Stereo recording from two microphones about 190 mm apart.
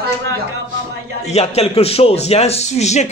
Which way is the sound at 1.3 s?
35° left (ahead or behind).